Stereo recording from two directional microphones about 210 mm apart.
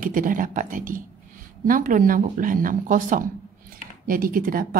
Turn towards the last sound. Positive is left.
turn(degrees=-45)  # may be behind; listen again after turning